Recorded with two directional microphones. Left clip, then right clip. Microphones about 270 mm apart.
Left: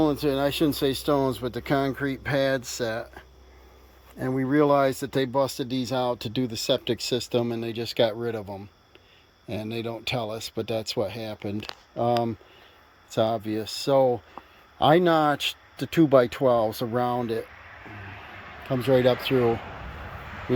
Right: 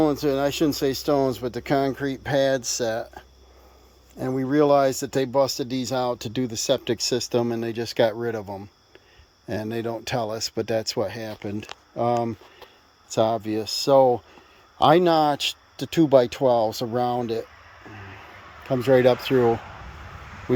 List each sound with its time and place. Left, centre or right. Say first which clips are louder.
0.0 s speech: right 2 dB; centre
18.7 s speech: right 3 dB; centre